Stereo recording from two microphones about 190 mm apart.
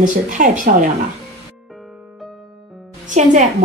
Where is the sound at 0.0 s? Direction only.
40° right (ahead or behind).